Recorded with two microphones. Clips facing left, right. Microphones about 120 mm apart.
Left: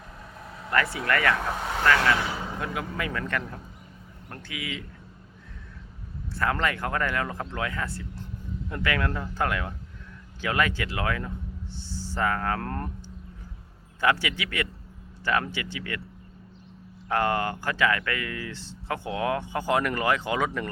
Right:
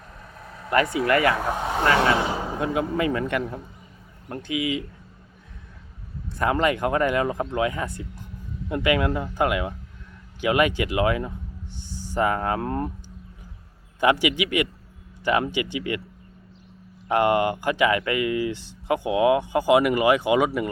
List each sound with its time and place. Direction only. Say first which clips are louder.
0.7 s speech: right 5 dB; 20° right (ahead or behind)
6.3 s speech: right 5 dB; 20° right (ahead or behind)
14.0 s speech: right 5 dB; 15° right (ahead or behind)
17.1 s speech: right 5 dB; 15° right (ahead or behind)